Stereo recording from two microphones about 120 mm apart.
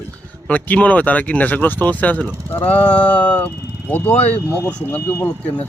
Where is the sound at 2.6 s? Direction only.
55° left (ahead or behind).